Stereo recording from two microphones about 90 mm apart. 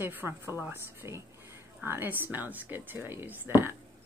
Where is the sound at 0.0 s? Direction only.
25° right (ahead or behind).